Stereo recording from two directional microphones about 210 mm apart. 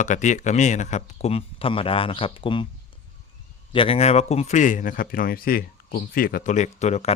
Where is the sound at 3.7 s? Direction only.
25° left (ahead or behind).